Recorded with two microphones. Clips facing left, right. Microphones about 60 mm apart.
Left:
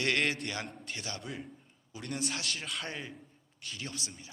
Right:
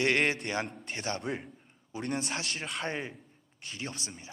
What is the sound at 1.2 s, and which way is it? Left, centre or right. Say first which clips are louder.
Speech: right 6 dB; right.